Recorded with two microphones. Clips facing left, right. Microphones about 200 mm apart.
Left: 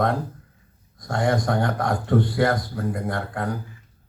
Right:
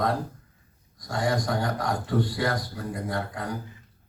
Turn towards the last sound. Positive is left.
turn(degrees=55)  # may be behind; listen again after turning